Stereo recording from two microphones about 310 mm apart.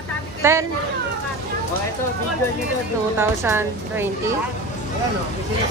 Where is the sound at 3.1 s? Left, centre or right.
Centre.